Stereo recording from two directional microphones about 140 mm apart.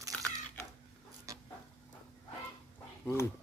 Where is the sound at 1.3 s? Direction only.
25° right (ahead or behind).